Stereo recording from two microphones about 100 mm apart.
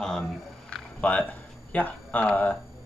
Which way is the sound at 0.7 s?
10° left (ahead or behind).